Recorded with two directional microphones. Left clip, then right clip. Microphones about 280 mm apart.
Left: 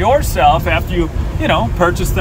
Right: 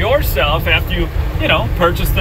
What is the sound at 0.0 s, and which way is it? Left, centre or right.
Speech, centre.